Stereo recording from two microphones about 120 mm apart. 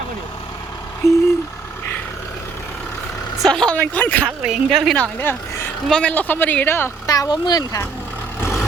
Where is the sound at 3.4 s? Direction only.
5° left (ahead or behind).